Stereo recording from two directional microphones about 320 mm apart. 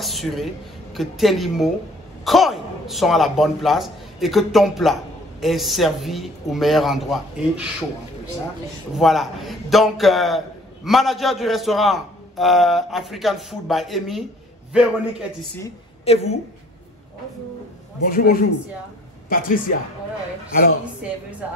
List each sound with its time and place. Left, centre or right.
0.0 s a sound: centre
0.9 s a man's voice: centre
8.9 s a man's voice: centre
15.6 s a woman's voice: centre
18.0 s a man's voice: left